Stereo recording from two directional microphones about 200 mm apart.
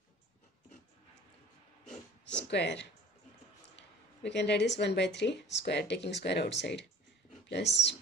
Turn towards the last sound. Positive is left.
turn(degrees=60)  # may be behind; listen again after turning